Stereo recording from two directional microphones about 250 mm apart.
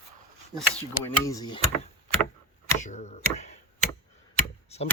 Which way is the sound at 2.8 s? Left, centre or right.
Left.